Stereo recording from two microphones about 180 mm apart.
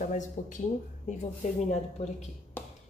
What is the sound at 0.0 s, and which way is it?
Speech, 45° left (ahead or behind).